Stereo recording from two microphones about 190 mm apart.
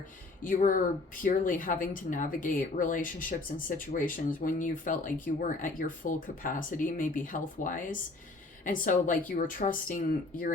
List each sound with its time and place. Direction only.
0.4 s speech: 45° left (ahead or behind)